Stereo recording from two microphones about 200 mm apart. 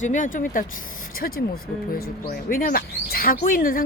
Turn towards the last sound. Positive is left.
turn(degrees=45)  # may be behind; listen again after turning